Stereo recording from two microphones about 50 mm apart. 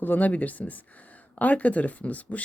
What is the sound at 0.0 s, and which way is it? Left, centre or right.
Speech, left.